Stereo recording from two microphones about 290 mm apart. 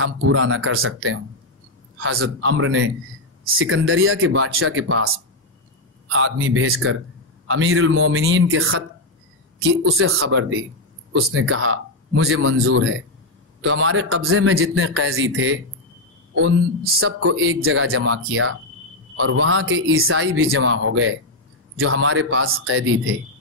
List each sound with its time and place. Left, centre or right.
0.0 s a man's voice: right
9.8 s a man's voice: right